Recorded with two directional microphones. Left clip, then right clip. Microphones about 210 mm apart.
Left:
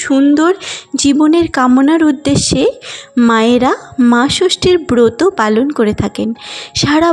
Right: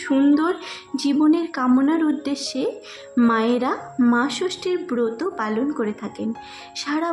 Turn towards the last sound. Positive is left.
turn(degrees=35)  # may be behind; listen again after turning